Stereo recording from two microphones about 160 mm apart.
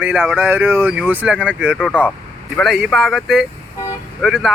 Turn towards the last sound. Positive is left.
turn(degrees=0)  # may be behind; listen again after turning